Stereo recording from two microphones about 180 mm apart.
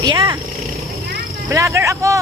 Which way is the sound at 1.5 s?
15° right (ahead or behind).